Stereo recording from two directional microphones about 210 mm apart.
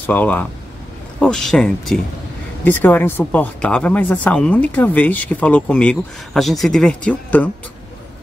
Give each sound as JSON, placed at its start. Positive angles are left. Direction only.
{"t": 0.0, "sound": "speech", "side_deg": 10}